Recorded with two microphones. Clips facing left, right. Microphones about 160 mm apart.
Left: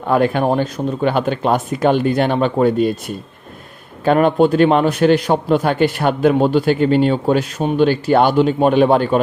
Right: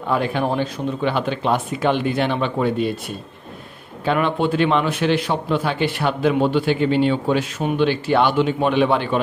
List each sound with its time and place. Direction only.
0.1 s a man's voice: 50° left (ahead or behind)
4.0 s a man's voice: 45° left (ahead or behind)